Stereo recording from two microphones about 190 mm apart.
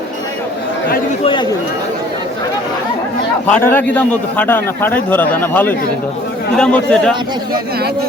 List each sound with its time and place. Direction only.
1.2 s a man's voice: 25° left (ahead or behind)
3.5 s a man's voice: 10° left (ahead or behind)